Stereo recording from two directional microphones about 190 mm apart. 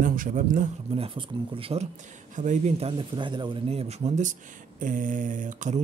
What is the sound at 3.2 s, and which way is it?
Speech, 25° right (ahead or behind).